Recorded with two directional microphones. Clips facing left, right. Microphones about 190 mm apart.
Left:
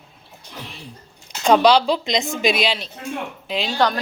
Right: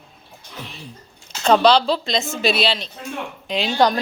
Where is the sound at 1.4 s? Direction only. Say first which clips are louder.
Even; 10° left (ahead or behind).